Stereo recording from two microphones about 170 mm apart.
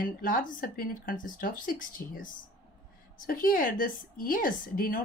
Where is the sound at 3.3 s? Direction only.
55° left (ahead or behind).